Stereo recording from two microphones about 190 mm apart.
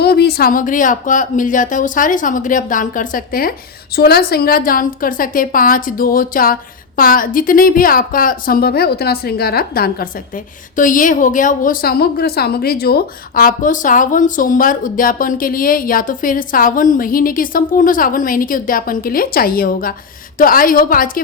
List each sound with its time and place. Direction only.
0.0 s a woman's voice: 55° left (ahead or behind)